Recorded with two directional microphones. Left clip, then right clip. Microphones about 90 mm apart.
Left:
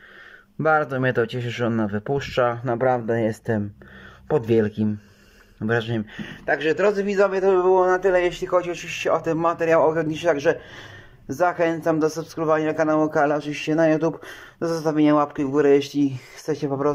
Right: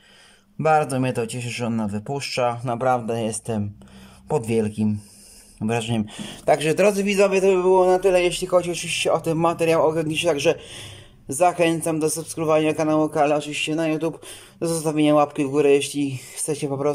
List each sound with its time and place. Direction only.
0.6 s a man's voice: 5° right (ahead or behind)
6.0 s speech: 40° right (ahead or behind)
6.9 s a man's voice: 30° right (ahead or behind); by 14.1 s centre (ahead or behind)
14.2 s speech: 15° right (ahead or behind)